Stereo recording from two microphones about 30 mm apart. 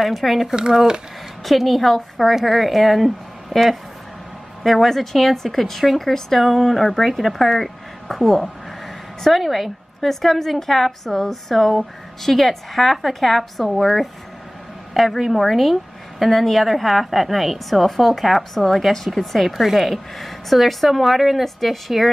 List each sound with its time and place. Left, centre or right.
0.2 s a woman's voice: centre
1.6 s a woman's voice: centre
20.2 s a woman's voice: centre